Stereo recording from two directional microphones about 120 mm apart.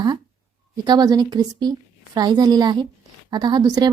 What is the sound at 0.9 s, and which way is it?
A woman's voice, 35° right (ahead or behind).